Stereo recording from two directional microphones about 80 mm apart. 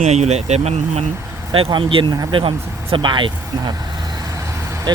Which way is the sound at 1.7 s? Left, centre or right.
Right.